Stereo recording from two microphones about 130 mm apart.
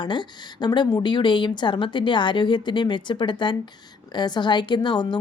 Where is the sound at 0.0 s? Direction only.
35° left (ahead or behind).